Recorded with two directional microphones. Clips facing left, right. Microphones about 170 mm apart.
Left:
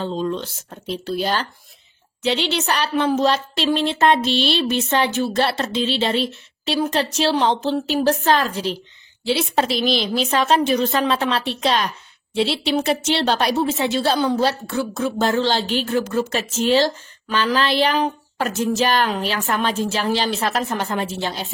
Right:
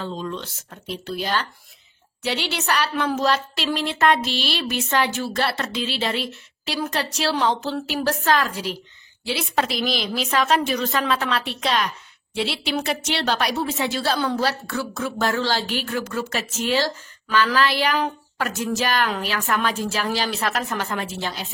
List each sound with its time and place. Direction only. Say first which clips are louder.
0.0 s speech: left 6 dB; 30° left (ahead or behind)